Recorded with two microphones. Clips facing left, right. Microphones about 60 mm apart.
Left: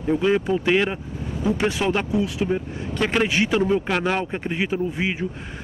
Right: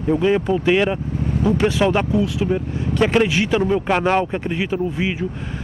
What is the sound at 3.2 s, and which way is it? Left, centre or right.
Speech, left.